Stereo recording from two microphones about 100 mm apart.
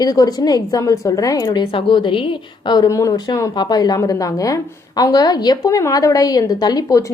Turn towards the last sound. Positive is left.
turn(degrees=40)  # may be behind; listen again after turning